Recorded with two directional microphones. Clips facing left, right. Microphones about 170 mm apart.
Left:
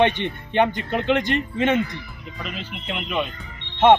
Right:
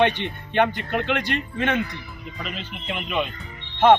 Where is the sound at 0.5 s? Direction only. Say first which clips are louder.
Left 1 dB; 20° left (ahead or behind).